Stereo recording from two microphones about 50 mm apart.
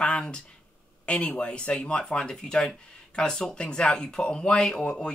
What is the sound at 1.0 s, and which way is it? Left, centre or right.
Speech, left.